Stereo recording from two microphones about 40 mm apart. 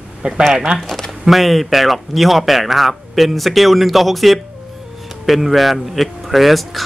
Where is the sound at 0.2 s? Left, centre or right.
Right.